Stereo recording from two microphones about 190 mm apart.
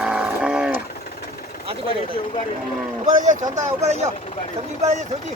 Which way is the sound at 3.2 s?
40° right (ahead or behind).